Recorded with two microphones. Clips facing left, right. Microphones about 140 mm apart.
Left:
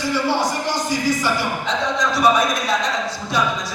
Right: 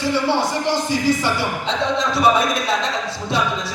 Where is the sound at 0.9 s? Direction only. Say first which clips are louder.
Right 1 dB; 25° right (ahead or behind).